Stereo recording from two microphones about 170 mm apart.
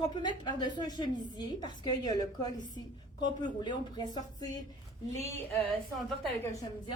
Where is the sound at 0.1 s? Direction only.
25° left (ahead or behind).